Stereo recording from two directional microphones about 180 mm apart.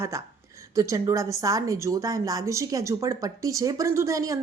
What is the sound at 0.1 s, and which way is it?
A woman's voice, 15° right (ahead or behind).